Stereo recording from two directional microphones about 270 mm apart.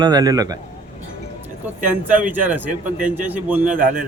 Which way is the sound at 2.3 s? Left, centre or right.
Centre.